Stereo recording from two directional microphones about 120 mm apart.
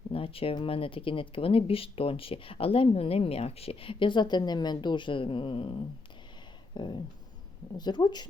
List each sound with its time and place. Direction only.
0.1 s speech: 50° left (ahead or behind)